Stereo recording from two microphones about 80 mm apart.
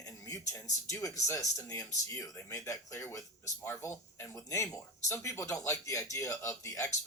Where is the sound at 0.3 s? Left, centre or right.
Left.